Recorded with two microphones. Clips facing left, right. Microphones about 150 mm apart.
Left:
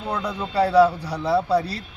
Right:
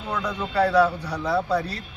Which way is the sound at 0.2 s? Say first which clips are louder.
Even; 10° left (ahead or behind).